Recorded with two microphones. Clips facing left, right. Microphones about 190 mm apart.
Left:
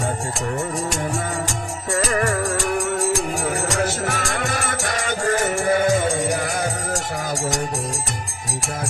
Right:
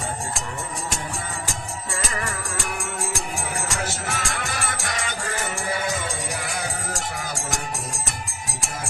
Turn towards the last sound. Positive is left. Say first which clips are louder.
# left 6 dB
turn(degrees=45)  # may be behind; listen again after turning